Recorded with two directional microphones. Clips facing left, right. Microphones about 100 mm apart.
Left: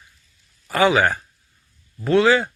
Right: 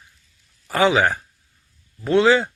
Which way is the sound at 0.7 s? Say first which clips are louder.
Even; 20° right (ahead or behind).